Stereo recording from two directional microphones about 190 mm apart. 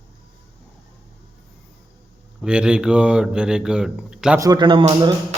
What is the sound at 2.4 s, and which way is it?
Speech, 5° right (ahead or behind).